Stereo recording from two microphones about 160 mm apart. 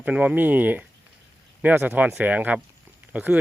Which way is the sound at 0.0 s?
10° right (ahead or behind).